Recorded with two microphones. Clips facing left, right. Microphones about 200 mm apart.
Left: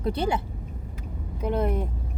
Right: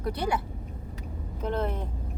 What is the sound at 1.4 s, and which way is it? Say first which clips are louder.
Speech: left 4 dB; 10° left (ahead or behind).